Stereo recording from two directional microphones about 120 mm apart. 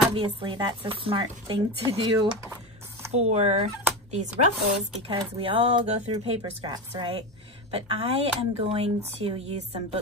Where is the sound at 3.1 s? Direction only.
65° right (ahead or behind).